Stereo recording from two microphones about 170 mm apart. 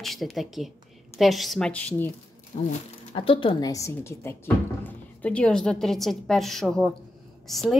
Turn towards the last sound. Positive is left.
turn(degrees=0)  # may be behind; listen again after turning